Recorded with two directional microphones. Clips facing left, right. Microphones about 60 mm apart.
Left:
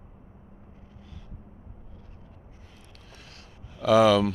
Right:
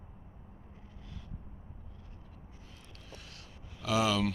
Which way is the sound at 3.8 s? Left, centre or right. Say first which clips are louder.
Left 11 dB; left.